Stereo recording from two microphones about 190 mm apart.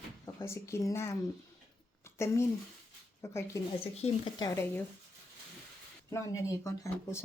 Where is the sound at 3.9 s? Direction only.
30° left (ahead or behind); by 4.8 s 15° left (ahead or behind).